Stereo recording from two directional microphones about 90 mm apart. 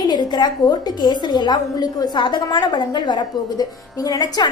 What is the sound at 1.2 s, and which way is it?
A woman's voice, 55° left (ahead or behind).